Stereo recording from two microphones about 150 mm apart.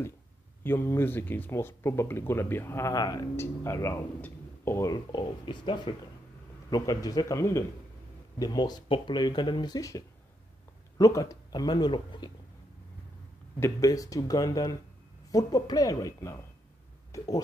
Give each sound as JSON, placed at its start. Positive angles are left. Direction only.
{"t": 0.7, "sound": "speech", "side_deg": 15}
{"t": 13.6, "sound": "speech", "side_deg": 20}
{"t": 17.1, "sound": "speech", "side_deg": 20}